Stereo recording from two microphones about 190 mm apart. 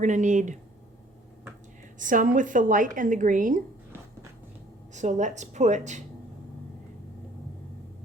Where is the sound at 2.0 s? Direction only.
45° right (ahead or behind).